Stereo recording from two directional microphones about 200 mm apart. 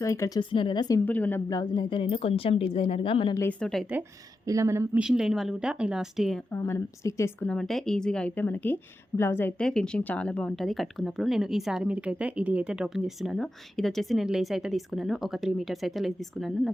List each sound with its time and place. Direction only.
0.0 s a woman's voice: 15° left (ahead or behind)
1.0 s a woman's voice: 10° left (ahead or behind)
1.5 s speech: 20° left (ahead or behind)
3.3 s a woman's voice: 10° left (ahead or behind)
4.4 s a woman's voice: 15° right (ahead or behind)
6.5 s a woman's voice: 15° left (ahead or behind)
7.5 s a woman's voice: centre (ahead or behind)